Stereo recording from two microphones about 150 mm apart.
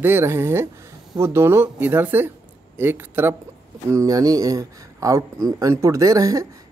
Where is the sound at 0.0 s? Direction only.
15° right (ahead or behind).